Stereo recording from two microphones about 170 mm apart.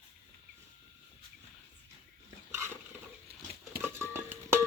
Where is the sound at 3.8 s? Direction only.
15° right (ahead or behind).